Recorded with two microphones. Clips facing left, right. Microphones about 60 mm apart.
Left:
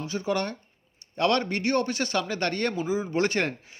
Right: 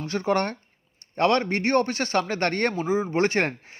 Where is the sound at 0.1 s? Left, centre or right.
Right.